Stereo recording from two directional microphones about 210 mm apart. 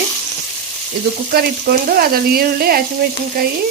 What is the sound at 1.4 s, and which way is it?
Frying, 45° right (ahead or behind).